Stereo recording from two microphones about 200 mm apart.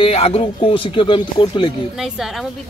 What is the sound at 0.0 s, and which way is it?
A man's voice, 30° left (ahead or behind).